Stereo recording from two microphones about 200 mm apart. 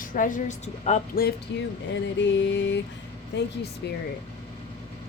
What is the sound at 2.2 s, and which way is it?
Speech, 65° left (ahead or behind).